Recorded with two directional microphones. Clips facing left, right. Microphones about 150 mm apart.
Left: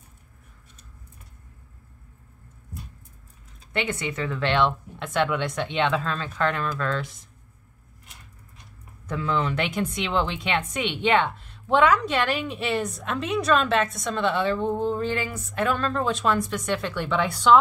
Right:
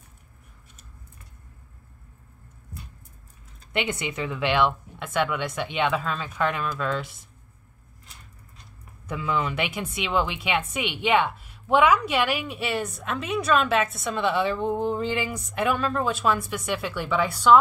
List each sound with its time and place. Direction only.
3.7 s a woman's voice: 15° right (ahead or behind)
9.0 s a woman's voice: 10° right (ahead or behind)